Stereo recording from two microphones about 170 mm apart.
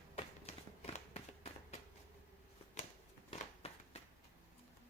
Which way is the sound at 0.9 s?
40° left (ahead or behind).